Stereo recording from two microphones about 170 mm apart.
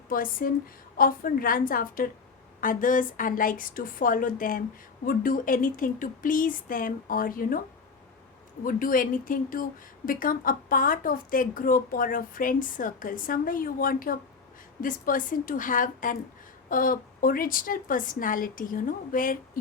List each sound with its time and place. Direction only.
0.1 s a woman's voice: 55° left (ahead or behind)
8.6 s a woman's voice: 55° left (ahead or behind)